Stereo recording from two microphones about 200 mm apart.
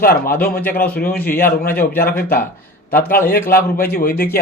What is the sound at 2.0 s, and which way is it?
Speech, 50° left (ahead or behind).